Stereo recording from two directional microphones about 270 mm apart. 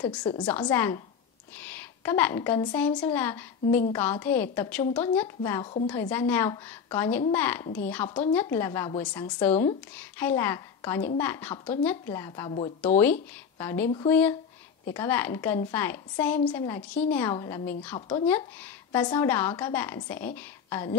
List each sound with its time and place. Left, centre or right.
0.2 s a woman's voice: centre